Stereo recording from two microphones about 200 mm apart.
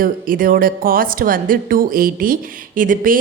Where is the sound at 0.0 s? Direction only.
45° right (ahead or behind).